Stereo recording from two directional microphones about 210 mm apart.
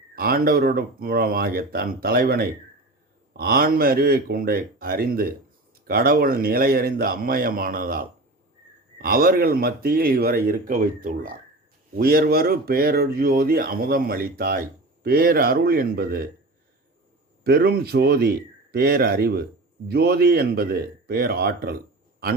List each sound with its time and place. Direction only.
0.2 s speech: 45° right (ahead or behind)
17.4 s speech: 45° right (ahead or behind)